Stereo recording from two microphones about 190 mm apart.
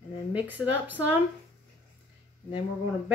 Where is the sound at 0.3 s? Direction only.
10° right (ahead or behind).